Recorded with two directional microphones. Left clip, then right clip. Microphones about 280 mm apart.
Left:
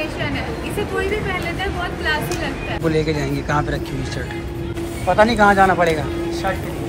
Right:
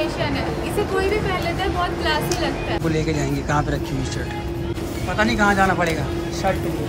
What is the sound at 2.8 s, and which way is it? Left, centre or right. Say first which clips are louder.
Speech: left 6 dB; centre.